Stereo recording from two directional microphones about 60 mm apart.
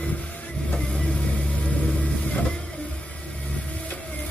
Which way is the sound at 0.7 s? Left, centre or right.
Centre.